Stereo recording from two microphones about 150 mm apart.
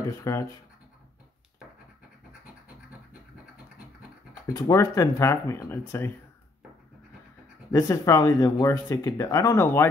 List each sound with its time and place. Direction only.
0.2 s speech: 20° left (ahead or behind)
4.3 s speech: 20° left (ahead or behind)
7.7 s speech: 20° left (ahead or behind)